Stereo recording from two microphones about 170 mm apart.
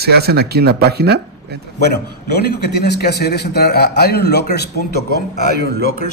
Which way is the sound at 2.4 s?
75° left (ahead or behind).